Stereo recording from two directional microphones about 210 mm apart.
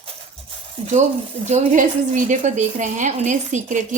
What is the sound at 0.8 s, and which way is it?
A woman's voice, 30° right (ahead or behind).